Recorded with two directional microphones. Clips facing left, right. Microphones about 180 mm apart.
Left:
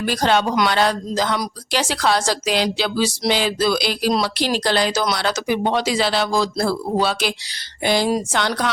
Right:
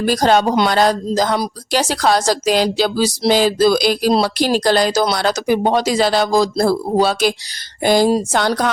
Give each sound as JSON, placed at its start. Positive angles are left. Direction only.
{"t": 0.0, "sound": "a woman's voice", "side_deg": -40}